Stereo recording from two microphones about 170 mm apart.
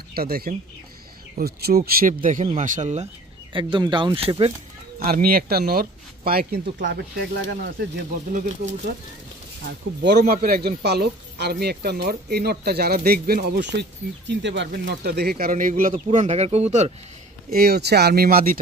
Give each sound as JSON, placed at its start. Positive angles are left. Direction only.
{"t": 0.1, "sound": "speech", "side_deg": -60}
{"t": 3.5, "sound": "speech", "side_deg": -25}
{"t": 4.9, "sound": "speech", "side_deg": -60}
{"t": 8.3, "sound": "speech", "side_deg": -50}
{"t": 10.0, "sound": "speech", "side_deg": -65}
{"t": 16.1, "sound": "speech", "side_deg": -40}
{"t": 17.5, "sound": "speech", "side_deg": -65}